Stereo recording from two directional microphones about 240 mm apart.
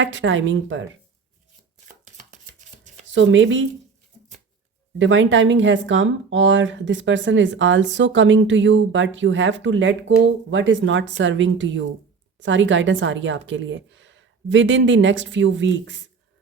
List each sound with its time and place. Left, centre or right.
0.0 s speech: right
3.2 s speech: right
4.9 s speech: right